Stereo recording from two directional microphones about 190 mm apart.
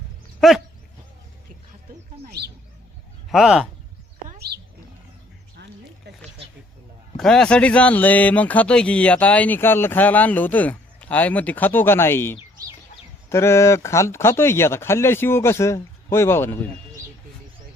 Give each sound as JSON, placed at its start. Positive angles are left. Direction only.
{"t": 0.3, "sound": "dog", "side_deg": 0}
{"t": 2.4, "sound": "speech", "side_deg": -60}
{"t": 3.2, "sound": "speech", "side_deg": 0}
{"t": 4.3, "sound": "a sound", "side_deg": -55}
{"t": 7.2, "sound": "speech", "side_deg": 5}